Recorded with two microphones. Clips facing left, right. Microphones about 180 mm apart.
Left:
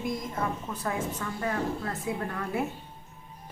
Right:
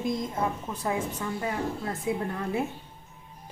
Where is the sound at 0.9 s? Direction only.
20° right (ahead or behind).